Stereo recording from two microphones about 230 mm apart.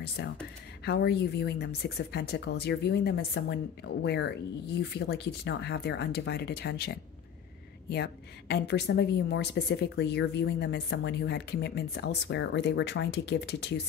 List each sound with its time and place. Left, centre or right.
0.2 s speech: left